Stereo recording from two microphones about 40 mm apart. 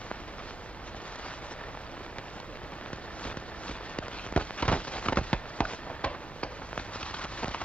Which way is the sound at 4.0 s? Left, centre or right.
Left.